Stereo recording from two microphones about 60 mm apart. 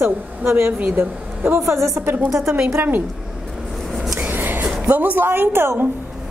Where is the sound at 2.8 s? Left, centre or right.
Right.